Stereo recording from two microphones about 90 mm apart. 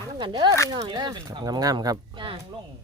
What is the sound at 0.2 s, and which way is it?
Speech, 60° right (ahead or behind).